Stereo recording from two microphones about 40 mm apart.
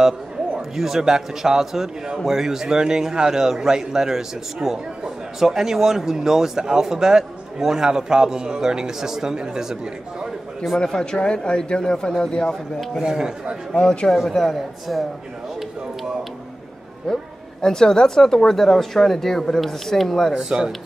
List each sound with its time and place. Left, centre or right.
0.6 s a man's voice: centre
11.0 s speech: left
12.9 s a man's voice: centre
13.7 s speech: left
14.1 s a man's voice: centre
17.1 s speech: centre
20.3 s a man's voice: centre